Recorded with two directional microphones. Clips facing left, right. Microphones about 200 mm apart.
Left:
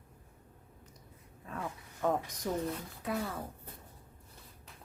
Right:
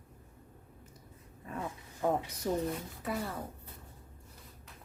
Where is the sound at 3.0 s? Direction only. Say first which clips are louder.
Left 1 dB; centre (ahead or behind).